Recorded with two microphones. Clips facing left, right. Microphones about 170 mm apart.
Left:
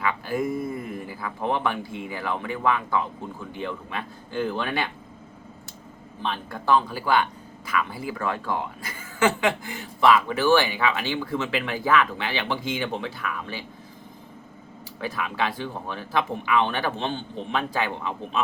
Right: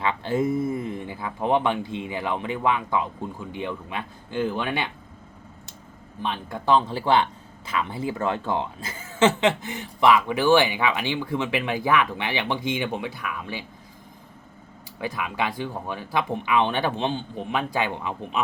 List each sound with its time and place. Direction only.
0.0 s speech: 25° right (ahead or behind)
6.2 s speech: 20° right (ahead or behind)
15.0 s speech: 15° right (ahead or behind)